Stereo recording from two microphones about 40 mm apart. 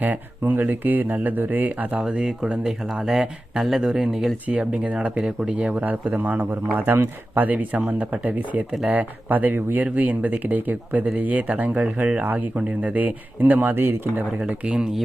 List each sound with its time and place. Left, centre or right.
0.0 s speech: right
2.0 s speech: right
5.7 s speech: right
6.7 s a man's voice: right
7.3 s speech: right
9.8 s speech: right
14.3 s speech: right